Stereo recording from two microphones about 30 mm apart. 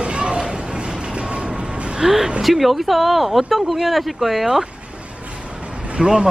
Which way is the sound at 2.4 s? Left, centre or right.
Centre.